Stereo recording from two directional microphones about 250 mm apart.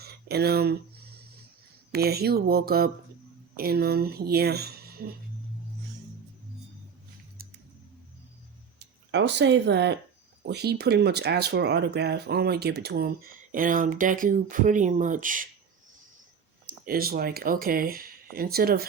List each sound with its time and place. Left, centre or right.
0.0 s a sound: right
1.9 s speech: right
9.1 s speech: right
16.8 s speech: right